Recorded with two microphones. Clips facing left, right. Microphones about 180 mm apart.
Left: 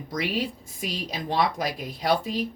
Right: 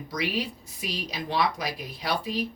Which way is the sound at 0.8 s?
50° left (ahead or behind).